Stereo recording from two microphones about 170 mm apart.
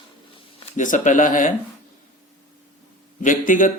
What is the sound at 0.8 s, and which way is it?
Speech, 50° left (ahead or behind).